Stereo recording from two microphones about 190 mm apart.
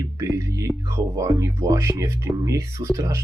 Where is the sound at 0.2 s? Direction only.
15° right (ahead or behind).